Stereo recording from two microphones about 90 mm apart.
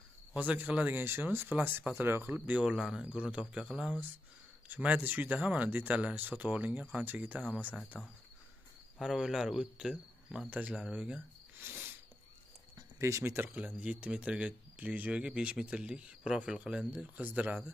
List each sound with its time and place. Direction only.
0.3 s speech: 15° right (ahead or behind)
2.6 s speech: 5° right (ahead or behind)
7.9 s cricket: 5° right (ahead or behind)
10.5 s speech: 20° right (ahead or behind)
11.6 s a sound: 20° right (ahead or behind)
13.0 s speech: 30° right (ahead or behind)
13.7 s speech: 15° right (ahead or behind)